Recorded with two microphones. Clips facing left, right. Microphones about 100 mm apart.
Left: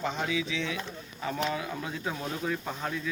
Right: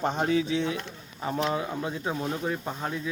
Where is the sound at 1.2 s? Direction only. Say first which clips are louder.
Right 3 dB; 30° right (ahead or behind).